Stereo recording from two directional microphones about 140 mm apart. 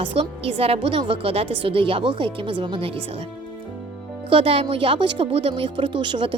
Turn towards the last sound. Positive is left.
turn(degrees=-35)  # may be behind; listen again after turning